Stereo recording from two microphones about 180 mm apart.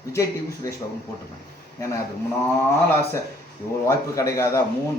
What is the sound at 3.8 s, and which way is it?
Speech, 15° left (ahead or behind).